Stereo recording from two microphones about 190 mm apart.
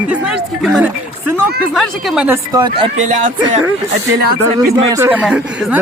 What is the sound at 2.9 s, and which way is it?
Speech, 40° right (ahead or behind).